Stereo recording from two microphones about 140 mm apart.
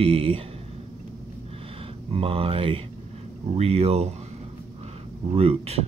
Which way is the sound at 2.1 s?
40° right (ahead or behind).